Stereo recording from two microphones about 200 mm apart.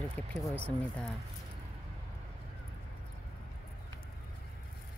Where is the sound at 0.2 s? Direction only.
10° left (ahead or behind).